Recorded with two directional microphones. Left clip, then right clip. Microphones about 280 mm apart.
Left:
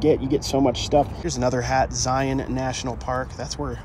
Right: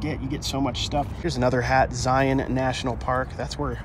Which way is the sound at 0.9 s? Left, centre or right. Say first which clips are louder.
Left 9 dB; right.